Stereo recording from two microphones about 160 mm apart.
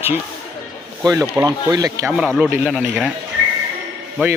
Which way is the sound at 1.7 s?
25° right (ahead or behind).